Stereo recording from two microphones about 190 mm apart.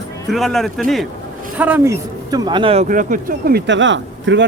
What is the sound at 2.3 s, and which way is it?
Speech, 20° right (ahead or behind).